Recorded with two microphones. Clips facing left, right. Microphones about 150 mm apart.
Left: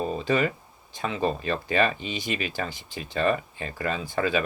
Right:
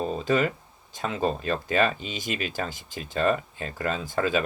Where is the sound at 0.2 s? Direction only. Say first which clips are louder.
Right 2 dB; 45° right (ahead or behind).